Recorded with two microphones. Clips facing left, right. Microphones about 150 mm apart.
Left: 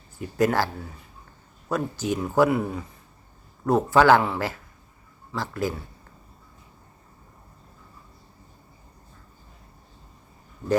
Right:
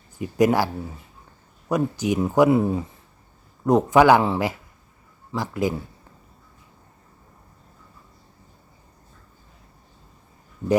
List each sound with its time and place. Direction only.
0.2 s speech: 15° right (ahead or behind)
1.7 s speech: 15° right (ahead or behind)